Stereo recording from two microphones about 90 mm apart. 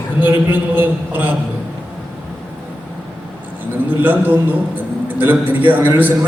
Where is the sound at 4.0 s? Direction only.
20° right (ahead or behind).